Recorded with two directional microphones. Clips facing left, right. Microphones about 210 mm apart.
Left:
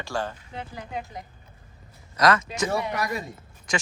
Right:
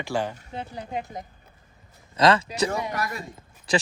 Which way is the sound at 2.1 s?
30° right (ahead or behind).